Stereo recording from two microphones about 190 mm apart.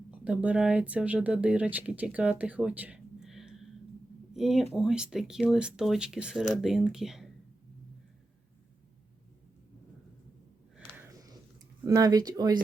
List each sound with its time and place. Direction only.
0.1 s speech: 5° right (ahead or behind)
10.8 s a sound: 10° right (ahead or behind)
11.8 s speech: 15° right (ahead or behind)